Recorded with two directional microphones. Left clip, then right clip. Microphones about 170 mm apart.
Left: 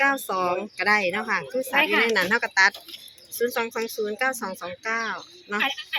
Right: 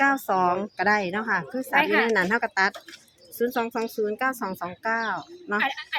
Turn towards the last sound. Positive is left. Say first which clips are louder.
# left 1 dB
turn(degrees=-10)  # may be behind; listen again after turning